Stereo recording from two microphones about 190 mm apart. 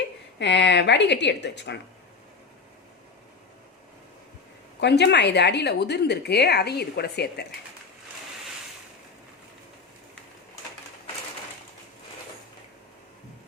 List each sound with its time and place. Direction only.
0.3 s a woman's voice: 65° left (ahead or behind)
4.8 s a woman's voice: 65° left (ahead or behind)